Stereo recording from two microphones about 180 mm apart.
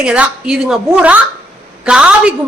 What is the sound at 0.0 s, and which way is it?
A man's voice, 5° right (ahead or behind).